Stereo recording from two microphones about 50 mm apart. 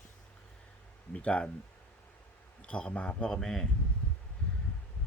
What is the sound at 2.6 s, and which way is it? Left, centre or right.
A man's voice, left.